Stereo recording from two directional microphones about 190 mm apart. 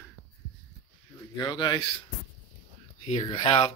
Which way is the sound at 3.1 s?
35° left (ahead or behind).